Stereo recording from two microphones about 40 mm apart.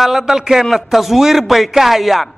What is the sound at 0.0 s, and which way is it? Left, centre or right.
A man's voice, centre.